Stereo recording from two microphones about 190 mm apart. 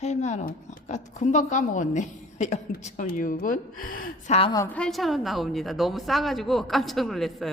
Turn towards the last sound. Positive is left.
turn(degrees=0)  # may be behind; listen again after turning